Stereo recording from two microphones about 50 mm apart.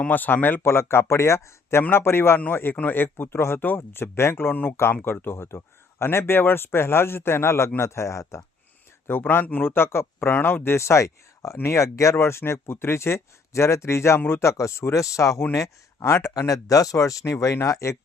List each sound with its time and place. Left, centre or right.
0.1 s speech: left
0.6 s speech: left
1.9 s speech: left
2.5 s speech: left
5.1 s a man's voice: left
9.0 s speech: left
12.2 s speech: left